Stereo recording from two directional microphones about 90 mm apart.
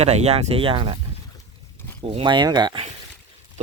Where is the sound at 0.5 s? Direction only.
80° right.